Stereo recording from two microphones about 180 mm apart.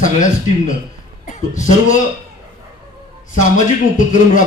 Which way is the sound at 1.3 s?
45° left (ahead or behind).